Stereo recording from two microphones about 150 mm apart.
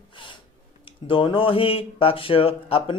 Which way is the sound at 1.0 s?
35° left (ahead or behind).